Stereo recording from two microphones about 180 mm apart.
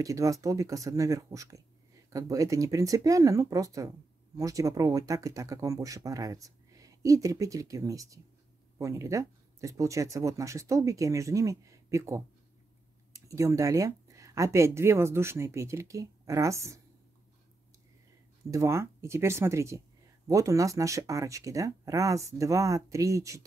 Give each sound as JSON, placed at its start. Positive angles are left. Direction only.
{"t": 0.0, "sound": "speech", "side_deg": -20}
{"t": 18.5, "sound": "speech", "side_deg": -15}